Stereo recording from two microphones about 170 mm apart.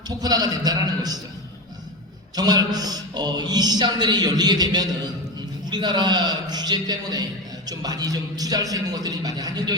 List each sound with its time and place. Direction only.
0.2 s a man's voice: 25° right (ahead or behind)
2.3 s a man's voice: 25° right (ahead or behind)